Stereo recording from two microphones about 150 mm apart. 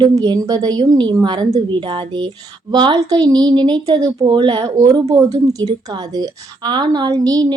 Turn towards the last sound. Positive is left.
turn(degrees=-25)  # may be behind; listen again after turning